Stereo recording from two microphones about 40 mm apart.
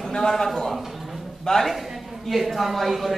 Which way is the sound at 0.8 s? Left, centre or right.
Centre.